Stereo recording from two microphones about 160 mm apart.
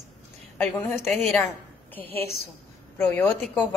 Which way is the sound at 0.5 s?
10° left (ahead or behind).